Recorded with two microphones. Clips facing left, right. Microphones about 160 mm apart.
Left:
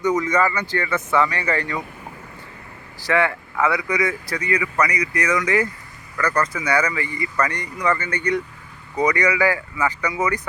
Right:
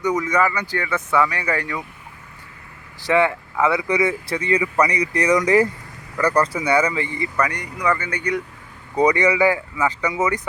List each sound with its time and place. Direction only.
0.0 s speech: 10° right (ahead or behind)
3.1 s speech: 20° right (ahead or behind)
7.4 s speech: 10° right (ahead or behind)
9.0 s speech: 25° right (ahead or behind)